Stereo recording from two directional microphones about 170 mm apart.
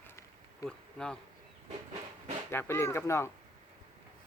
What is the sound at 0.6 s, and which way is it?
Speech, 5° left (ahead or behind).